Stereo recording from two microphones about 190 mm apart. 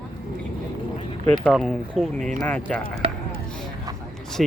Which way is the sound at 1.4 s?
Centre (ahead or behind).